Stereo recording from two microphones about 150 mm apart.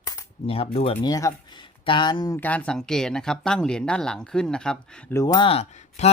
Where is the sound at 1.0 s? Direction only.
25° left (ahead or behind).